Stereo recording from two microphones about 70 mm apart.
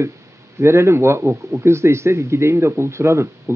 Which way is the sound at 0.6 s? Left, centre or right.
Right.